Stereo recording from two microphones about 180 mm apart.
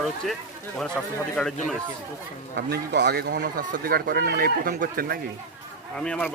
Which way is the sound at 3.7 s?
55° right (ahead or behind).